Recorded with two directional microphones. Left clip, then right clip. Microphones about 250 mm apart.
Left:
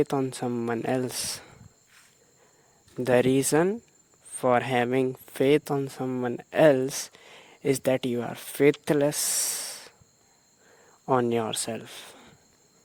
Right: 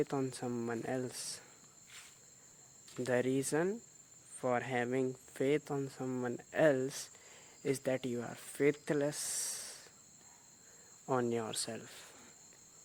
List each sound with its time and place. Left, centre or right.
0.0 s speech: left
3.0 s speech: left
11.0 s speech: left